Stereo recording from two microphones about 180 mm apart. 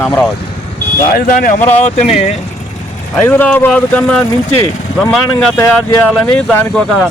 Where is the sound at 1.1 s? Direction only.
55° left (ahead or behind).